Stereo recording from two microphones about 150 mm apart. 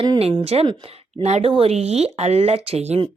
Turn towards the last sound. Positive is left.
turn(degrees=-45)  # may be behind; listen again after turning